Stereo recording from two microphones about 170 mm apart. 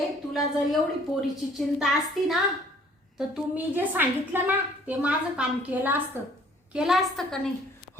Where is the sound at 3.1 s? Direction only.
5° right (ahead or behind).